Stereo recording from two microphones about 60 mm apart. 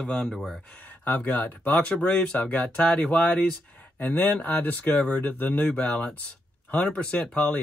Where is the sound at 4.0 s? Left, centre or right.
Left.